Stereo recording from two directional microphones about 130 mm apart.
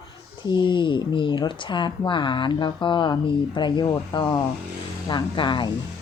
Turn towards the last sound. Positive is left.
turn(degrees=35)  # may be behind; listen again after turning